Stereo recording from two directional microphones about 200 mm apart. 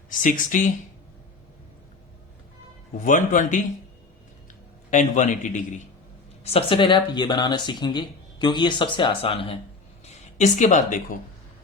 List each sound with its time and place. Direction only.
0.1 s a man's voice: 40° left (ahead or behind)
3.0 s a man's voice: 40° left (ahead or behind)
4.9 s a man's voice: 40° left (ahead or behind)